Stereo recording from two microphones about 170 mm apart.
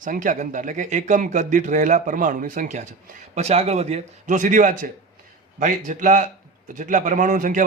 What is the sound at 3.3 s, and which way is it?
A man's voice, 40° right (ahead or behind).